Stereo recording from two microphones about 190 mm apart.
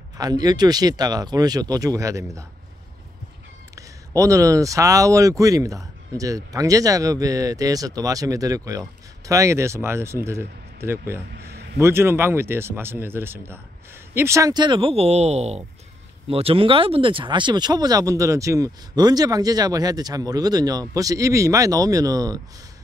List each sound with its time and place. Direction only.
0.2 s speech: 20° right (ahead or behind)
3.7 s speech: 15° right (ahead or behind)
11.3 s a man's voice: 60° right (ahead or behind)
11.8 s speech: 15° right (ahead or behind)